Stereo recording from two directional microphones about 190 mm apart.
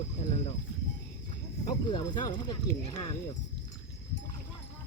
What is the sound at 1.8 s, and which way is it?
Speech, 20° left (ahead or behind).